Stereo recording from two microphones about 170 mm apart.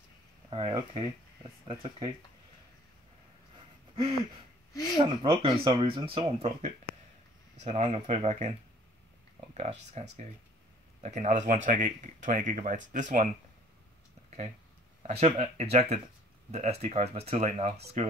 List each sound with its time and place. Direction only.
0.5 s speech: 30° right (ahead or behind)
4.9 s speech: 25° right (ahead or behind); by 13.3 s 50° right (ahead or behind)
15.0 s speech: 45° right (ahead or behind)